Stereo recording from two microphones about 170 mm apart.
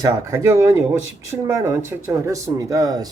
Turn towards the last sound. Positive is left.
turn(degrees=-20)  # may be behind; listen again after turning